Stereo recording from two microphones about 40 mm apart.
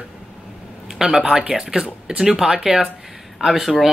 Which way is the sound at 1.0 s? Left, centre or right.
Centre.